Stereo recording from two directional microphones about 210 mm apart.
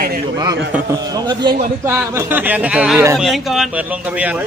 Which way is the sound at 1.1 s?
20° right (ahead or behind).